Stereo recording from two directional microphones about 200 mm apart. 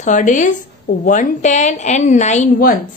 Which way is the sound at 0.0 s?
40° left (ahead or behind).